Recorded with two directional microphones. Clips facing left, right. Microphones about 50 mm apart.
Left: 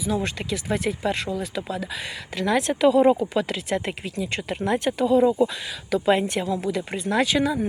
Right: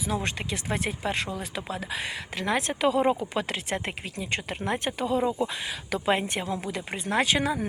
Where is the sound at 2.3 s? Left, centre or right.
Right.